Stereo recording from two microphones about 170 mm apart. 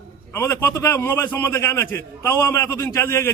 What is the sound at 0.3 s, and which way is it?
A man's voice, 15° left (ahead or behind).